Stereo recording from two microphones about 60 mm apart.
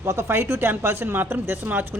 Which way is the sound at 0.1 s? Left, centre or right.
Right.